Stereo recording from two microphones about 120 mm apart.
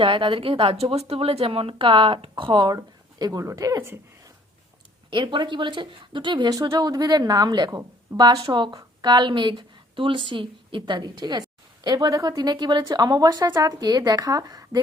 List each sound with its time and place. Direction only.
0.0 s speech: 45° right (ahead or behind); by 4.0 s 20° right (ahead or behind)
5.1 s speech: 40° right (ahead or behind)